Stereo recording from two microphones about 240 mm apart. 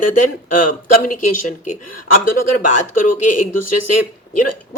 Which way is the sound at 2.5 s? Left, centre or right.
Left.